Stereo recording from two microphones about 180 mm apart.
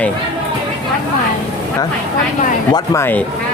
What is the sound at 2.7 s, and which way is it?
Speech, 20° left (ahead or behind).